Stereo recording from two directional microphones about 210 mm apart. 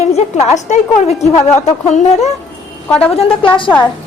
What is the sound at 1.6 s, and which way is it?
Speech, 35° left (ahead or behind).